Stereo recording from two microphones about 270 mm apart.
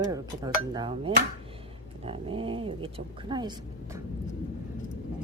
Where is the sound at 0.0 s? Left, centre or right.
Centre.